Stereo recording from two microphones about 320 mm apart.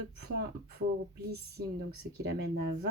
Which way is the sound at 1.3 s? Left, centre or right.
Right.